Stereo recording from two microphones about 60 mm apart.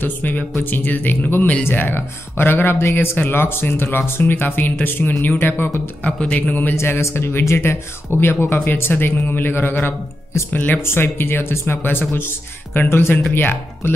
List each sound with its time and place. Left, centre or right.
0.0 s speech: left
6.0 s speech: left
6.8 s speech: left
10.8 s speech: left